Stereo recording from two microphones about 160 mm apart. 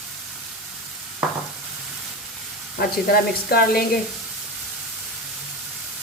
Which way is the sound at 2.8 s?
70° left (ahead or behind).